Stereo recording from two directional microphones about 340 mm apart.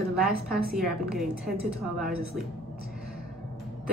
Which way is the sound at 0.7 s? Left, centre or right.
Centre.